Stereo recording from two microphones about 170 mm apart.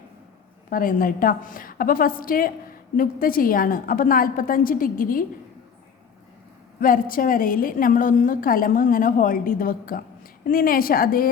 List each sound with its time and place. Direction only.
0.7 s a woman's voice: 55° left (ahead or behind)
6.7 s a woman's voice: 55° left (ahead or behind)